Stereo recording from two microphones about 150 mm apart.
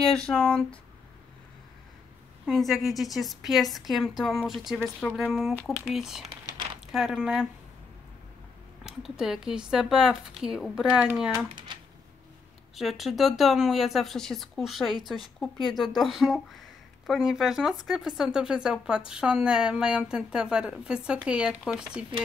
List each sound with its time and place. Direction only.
0.1 s speech: 5° left (ahead or behind)
2.4 s speech: centre (ahead or behind)
8.8 s speech: 5° right (ahead or behind)
11.7 s a sound: 30° right (ahead or behind)
12.7 s speech: centre (ahead or behind)